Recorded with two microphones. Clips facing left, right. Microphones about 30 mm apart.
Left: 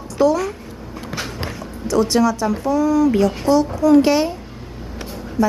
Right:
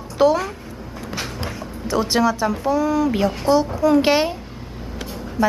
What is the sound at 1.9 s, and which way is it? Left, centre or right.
A woman's voice, centre.